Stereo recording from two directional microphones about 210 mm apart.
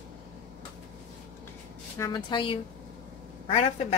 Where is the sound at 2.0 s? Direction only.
20° left (ahead or behind).